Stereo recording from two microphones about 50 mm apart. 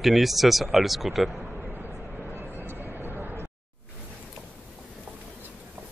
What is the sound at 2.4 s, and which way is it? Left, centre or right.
Vehicle, right.